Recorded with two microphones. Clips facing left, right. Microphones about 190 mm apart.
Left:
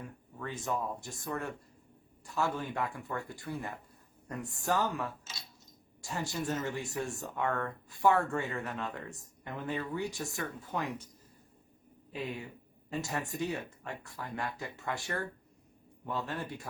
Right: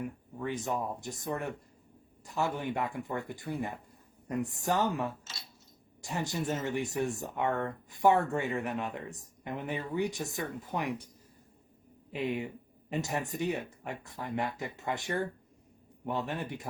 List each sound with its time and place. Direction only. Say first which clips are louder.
0.0 s speech: right 6 dB; 15° right (ahead or behind)
12.1 s speech: right 6 dB; 20° right (ahead or behind)